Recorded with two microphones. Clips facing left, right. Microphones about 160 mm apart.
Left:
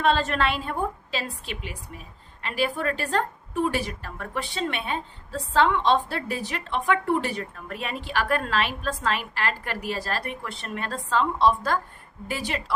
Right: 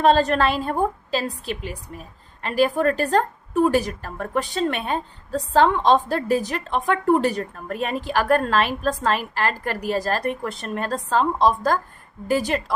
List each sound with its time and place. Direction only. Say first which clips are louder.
0.0 s a woman's voice: right 6 dB; 40° right (ahead or behind)